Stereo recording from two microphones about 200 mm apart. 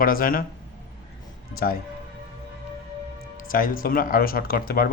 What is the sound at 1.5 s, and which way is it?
Speech, 50° left (ahead or behind).